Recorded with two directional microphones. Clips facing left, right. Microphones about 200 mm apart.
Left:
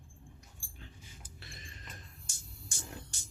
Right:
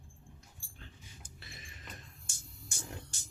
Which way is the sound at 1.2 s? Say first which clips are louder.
Left 1 dB; centre (ahead or behind).